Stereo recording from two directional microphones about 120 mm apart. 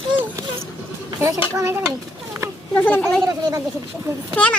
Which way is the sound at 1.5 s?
20° right (ahead or behind).